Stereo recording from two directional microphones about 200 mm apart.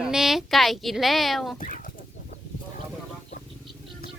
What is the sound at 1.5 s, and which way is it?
Chicken, 40° left (ahead or behind).